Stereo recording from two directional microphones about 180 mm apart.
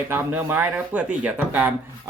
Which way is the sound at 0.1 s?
10° right (ahead or behind).